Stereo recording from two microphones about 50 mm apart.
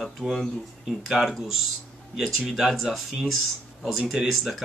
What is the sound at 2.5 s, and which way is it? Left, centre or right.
Speech, centre.